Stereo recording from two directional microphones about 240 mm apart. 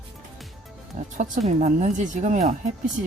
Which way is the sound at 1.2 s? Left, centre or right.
Right.